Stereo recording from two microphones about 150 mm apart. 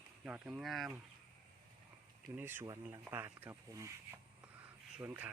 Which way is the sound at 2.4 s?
15° right (ahead or behind).